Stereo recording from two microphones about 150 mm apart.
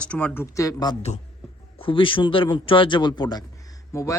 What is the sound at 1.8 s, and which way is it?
A man's voice, 35° left (ahead or behind).